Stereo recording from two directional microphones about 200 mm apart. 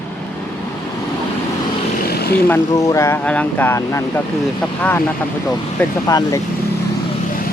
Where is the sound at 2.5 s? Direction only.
15° left (ahead or behind).